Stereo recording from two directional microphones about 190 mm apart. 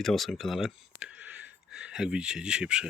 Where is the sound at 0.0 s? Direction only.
Centre (ahead or behind).